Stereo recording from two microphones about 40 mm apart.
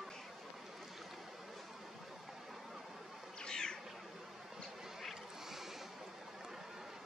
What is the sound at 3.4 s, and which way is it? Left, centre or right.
Cat, centre.